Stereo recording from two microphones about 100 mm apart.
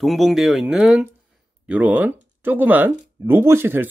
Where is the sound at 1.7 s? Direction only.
15° right (ahead or behind).